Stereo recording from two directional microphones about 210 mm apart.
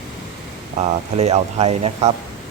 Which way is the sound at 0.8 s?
30° right (ahead or behind).